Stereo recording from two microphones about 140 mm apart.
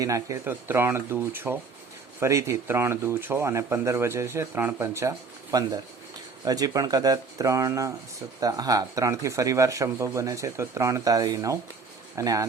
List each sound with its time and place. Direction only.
0.0 s speech: 25° right (ahead or behind)